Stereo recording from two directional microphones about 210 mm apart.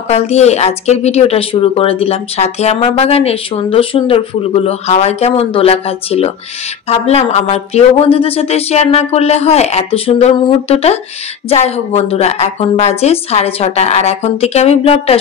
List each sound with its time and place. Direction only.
0.1 s speech: 30° left (ahead or behind)